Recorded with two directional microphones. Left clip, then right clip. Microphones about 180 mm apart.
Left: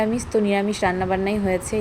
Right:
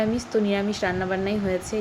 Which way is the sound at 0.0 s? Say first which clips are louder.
Left 3 dB; 15° left (ahead or behind).